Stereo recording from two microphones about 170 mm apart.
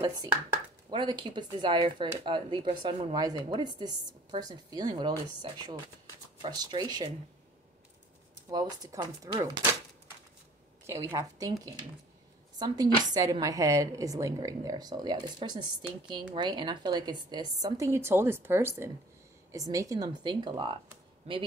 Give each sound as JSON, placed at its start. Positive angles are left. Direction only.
{"t": 0.0, "sound": "a woman's voice", "side_deg": -25}
{"t": 8.5, "sound": "a woman's voice", "side_deg": -25}
{"t": 10.9, "sound": "a woman's voice", "side_deg": -20}